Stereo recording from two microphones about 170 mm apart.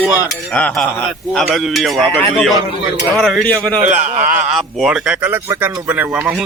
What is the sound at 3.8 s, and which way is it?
Speech, 45° right (ahead or behind).